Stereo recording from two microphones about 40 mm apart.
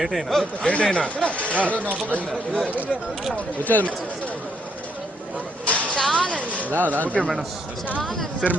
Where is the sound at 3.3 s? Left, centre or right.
Left.